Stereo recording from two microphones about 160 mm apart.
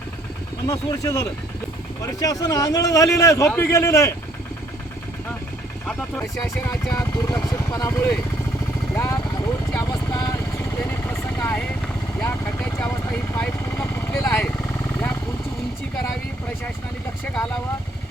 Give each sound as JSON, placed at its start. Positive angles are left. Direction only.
{"t": 0.7, "sound": "a man's voice", "side_deg": 20}
{"t": 5.9, "sound": "a man's voice", "side_deg": 15}
{"t": 9.7, "sound": "vehicle", "side_deg": 20}
{"t": 14.3, "sound": "speech", "side_deg": 5}
{"t": 14.7, "sound": "vehicle", "side_deg": 15}
{"t": 17.3, "sound": "speech", "side_deg": 5}